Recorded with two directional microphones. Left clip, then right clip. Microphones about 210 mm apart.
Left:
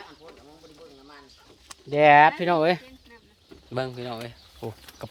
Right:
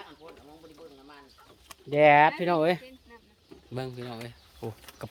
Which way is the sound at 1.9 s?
10° left (ahead or behind).